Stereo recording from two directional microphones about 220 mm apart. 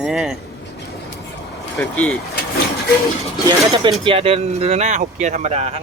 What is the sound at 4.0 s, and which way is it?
Speech, 25° right (ahead or behind).